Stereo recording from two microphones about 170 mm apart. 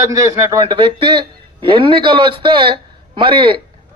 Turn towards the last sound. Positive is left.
turn(degrees=-30)  # may be behind; listen again after turning